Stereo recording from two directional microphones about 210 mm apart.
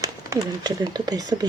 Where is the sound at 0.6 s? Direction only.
20° right (ahead or behind).